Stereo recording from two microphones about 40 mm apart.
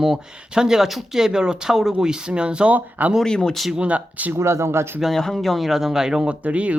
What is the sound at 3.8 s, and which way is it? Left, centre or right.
Speech, right.